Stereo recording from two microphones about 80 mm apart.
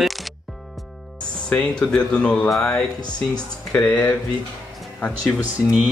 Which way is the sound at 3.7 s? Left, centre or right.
Centre.